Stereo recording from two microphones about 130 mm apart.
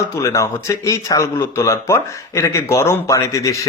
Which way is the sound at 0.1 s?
25° left (ahead or behind).